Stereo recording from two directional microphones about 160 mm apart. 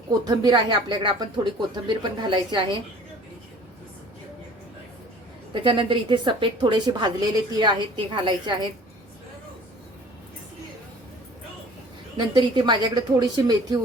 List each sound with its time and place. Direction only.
0.1 s a woman's voice: 25° right (ahead or behind)
5.5 s a woman's voice: 30° right (ahead or behind)
12.1 s a woman's voice: 30° right (ahead or behind)